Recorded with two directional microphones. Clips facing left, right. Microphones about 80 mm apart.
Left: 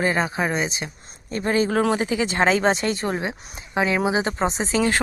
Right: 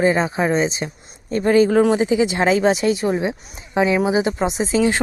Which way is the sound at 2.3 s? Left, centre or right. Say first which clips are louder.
Right 3 dB; centre.